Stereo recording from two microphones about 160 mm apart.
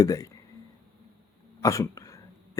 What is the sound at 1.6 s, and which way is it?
Speech, 20° left (ahead or behind).